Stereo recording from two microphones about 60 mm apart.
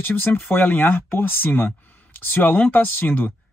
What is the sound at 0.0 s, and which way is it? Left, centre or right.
Speech, left.